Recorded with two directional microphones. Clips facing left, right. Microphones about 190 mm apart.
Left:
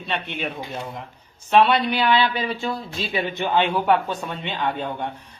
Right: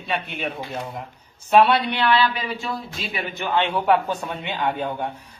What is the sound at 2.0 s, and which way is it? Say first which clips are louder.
Speech: right 1 dB; 20° left (ahead or behind).